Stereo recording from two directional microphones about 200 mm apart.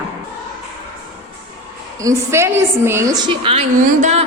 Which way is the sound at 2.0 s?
15° right (ahead or behind).